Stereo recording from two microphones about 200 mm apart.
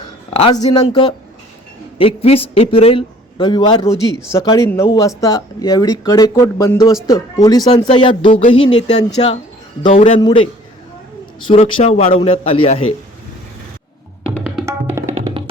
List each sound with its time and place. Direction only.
0.3 s a man's voice: 25° left (ahead or behind); by 10.1 s 40° left (ahead or behind)
10.2 s a man's voice: 20° left (ahead or behind)
11.4 s a man's voice: 30° left (ahead or behind)
14.6 s tabla: 15° right (ahead or behind)